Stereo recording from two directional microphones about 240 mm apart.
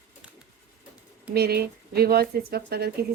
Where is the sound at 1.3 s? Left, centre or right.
Right.